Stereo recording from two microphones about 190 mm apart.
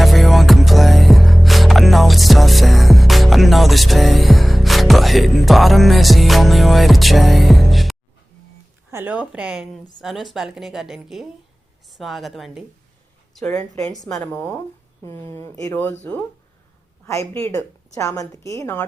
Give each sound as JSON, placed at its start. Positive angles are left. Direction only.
{"t": 0.0, "sound": "music", "side_deg": 0}
{"t": 8.9, "sound": "a woman's voice", "side_deg": -10}
{"t": 13.5, "sound": "a woman's voice", "side_deg": 15}
{"t": 17.3, "sound": "a woman's voice", "side_deg": 15}